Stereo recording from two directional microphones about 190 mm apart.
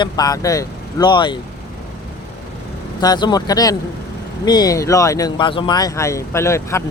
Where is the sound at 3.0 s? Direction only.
20° left (ahead or behind).